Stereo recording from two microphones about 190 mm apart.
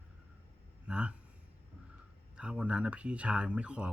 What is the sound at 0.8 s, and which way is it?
Speech, 5° right (ahead or behind).